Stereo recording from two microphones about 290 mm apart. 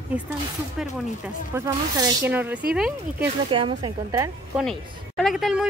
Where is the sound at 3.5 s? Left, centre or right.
Centre.